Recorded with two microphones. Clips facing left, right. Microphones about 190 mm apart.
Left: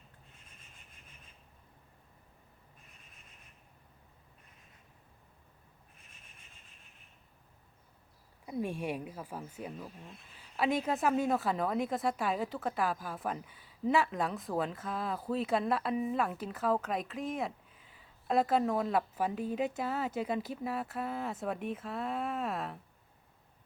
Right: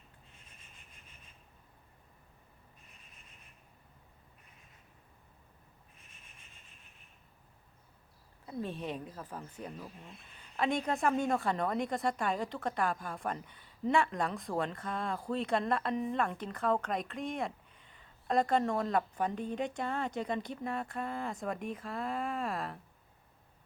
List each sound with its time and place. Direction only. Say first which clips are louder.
8.4 s a woman's voice: left 3 dB; 10° left (ahead or behind)